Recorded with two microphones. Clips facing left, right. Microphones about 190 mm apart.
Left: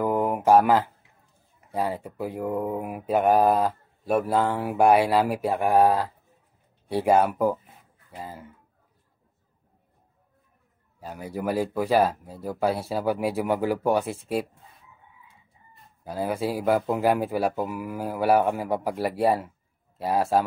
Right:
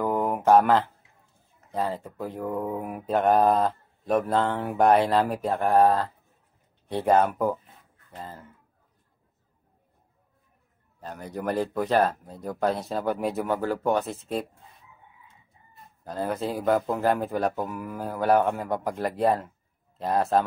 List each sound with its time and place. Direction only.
0.0 s a sound: 10° left (ahead or behind)
1.7 s mantra: 10° left (ahead or behind)
6.9 s speech: 10° left (ahead or behind)
11.0 s mantra: 10° left (ahead or behind)
16.0 s mantra: 10° left (ahead or behind)